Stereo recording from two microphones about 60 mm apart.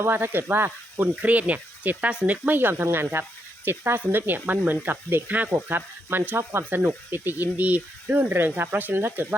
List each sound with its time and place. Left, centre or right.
0.0 s speech: right
1.1 s speech: right
5.3 s speech: right
5.6 s speech: right